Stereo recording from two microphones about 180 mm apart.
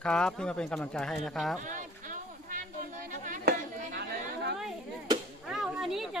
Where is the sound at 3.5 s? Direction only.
65° right (ahead or behind).